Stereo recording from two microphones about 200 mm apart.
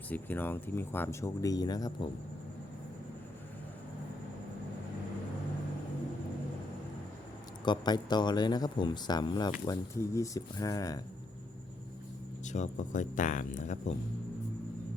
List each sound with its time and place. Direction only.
0.1 s speech: 10° left (ahead or behind)
7.6 s speech: 20° left (ahead or behind)
12.5 s speech: 35° left (ahead or behind)